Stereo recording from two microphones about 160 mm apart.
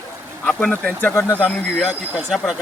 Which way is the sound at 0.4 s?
5° left (ahead or behind).